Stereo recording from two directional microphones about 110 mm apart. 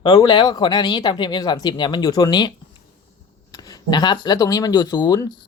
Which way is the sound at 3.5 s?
35° left (ahead or behind).